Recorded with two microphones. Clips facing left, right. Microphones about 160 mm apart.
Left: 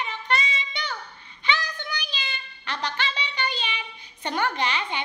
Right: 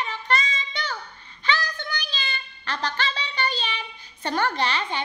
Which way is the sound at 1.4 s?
15° left (ahead or behind).